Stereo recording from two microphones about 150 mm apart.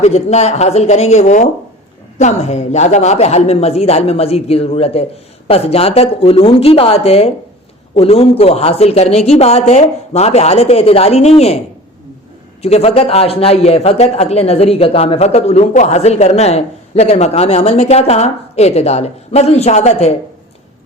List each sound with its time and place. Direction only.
0.0 s a woman's voice: 45° left (ahead or behind)
12.6 s speech: 40° left (ahead or behind)